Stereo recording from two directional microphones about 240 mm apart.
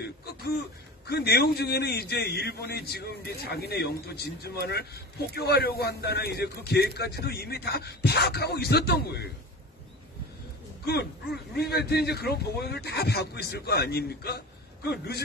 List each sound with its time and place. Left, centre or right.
1.0 s a man's voice: left
11.5 s a man's voice: left